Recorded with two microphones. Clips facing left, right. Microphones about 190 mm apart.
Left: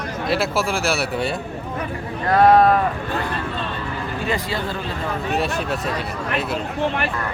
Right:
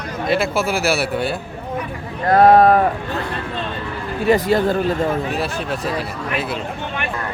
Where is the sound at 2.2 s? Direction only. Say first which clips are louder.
Right 3 dB; 40° right (ahead or behind).